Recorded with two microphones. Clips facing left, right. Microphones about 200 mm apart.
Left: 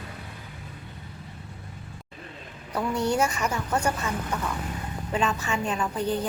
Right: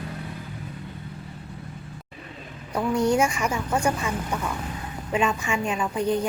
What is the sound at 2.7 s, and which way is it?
A woman's voice, 10° right (ahead or behind).